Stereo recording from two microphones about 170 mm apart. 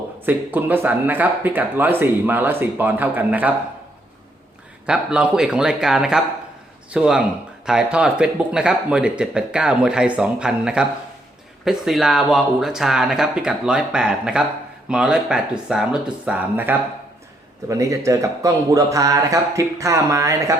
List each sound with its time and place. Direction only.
0.3 s speech: 10° right (ahead or behind)
4.9 s speech: 5° right (ahead or behind)